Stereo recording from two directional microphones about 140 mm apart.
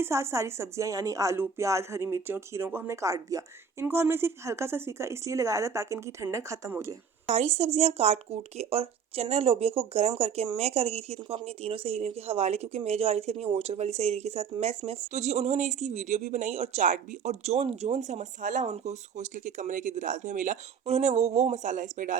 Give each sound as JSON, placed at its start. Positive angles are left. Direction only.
{"t": 0.0, "sound": "a woman's voice", "side_deg": -20}
{"t": 7.3, "sound": "speech", "side_deg": -50}